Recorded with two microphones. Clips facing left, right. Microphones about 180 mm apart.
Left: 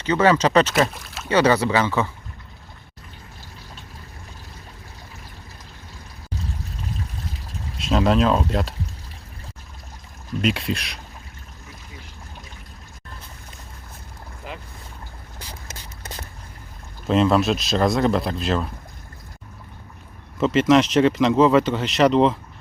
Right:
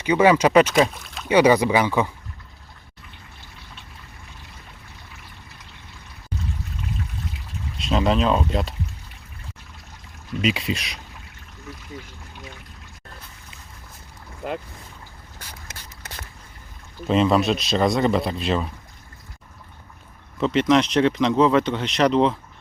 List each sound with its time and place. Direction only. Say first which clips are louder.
0.0 s speech: right 1 dB; 10° right (ahead or behind)
0.7 s speech: right 2 dB; 5° left (ahead or behind)
1.3 s speech: right 2 dB; 10° right (ahead or behind)
6.8 s trickle: right 1 dB; 35° left (ahead or behind)
7.8 s speech: left 2 dB; centre (ahead or behind)
10.4 s speech: even; centre (ahead or behind)
17.1 s speech: left 1 dB; centre (ahead or behind)
20.4 s speech: left 2 dB; centre (ahead or behind)